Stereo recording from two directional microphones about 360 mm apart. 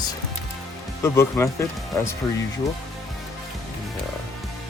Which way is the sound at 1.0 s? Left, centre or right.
Centre.